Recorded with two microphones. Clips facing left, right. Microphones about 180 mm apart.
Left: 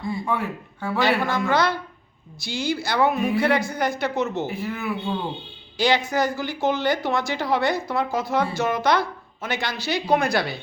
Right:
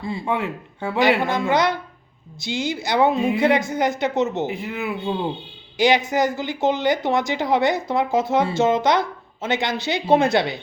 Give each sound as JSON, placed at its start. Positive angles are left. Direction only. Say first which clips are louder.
{"t": 0.1, "sound": "speech", "louder": "right 2 dB", "side_deg": -25}